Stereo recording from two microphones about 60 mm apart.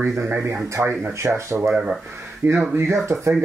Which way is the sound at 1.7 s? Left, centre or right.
Centre.